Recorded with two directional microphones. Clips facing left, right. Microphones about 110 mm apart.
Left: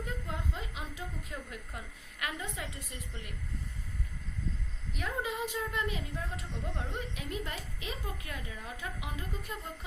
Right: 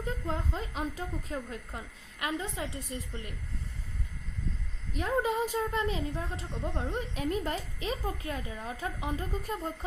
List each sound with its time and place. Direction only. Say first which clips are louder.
0.3 s a woman's voice: right 5 dB; 40° right (ahead or behind)
4.9 s a woman's voice: right 7 dB; 35° right (ahead or behind)